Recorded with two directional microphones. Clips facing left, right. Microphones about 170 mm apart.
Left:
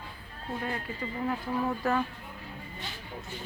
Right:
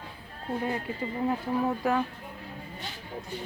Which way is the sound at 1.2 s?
20° right (ahead or behind).